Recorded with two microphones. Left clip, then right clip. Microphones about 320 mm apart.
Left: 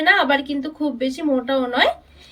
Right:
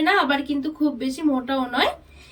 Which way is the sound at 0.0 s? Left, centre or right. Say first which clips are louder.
Left 4 dB; centre.